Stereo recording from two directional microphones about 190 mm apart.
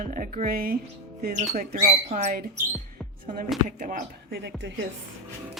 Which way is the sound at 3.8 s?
45° right (ahead or behind).